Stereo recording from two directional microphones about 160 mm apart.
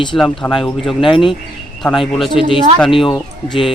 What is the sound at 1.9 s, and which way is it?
Speech, centre (ahead or behind).